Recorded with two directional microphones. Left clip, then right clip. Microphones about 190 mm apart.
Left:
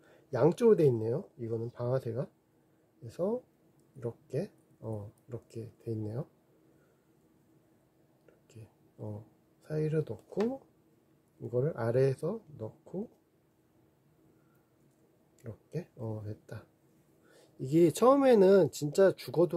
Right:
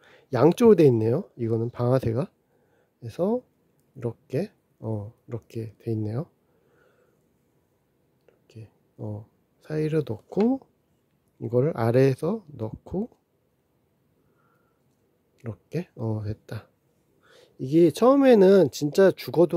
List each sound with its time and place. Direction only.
0.0 s speech: 40° right (ahead or behind)
8.5 s a sound: 30° right (ahead or behind)
9.6 s speech: 40° right (ahead or behind)
11.5 s speech: 45° right (ahead or behind)
15.4 s speech: 45° right (ahead or behind)
17.3 s speech: 30° right (ahead or behind)